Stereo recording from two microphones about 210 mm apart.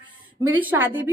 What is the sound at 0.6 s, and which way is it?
Speech, 10° right (ahead or behind).